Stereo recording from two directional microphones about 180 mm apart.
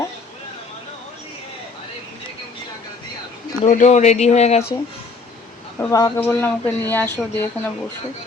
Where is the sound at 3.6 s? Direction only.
40° left (ahead or behind).